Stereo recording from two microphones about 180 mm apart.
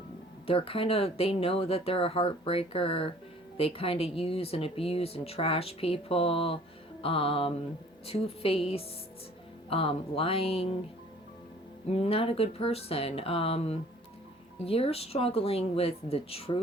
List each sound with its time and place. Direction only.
0.4 s speech: 30° left (ahead or behind)
11.9 s speech: 35° left (ahead or behind)